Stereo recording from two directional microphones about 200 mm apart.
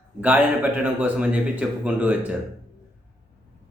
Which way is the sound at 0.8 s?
5° right (ahead or behind).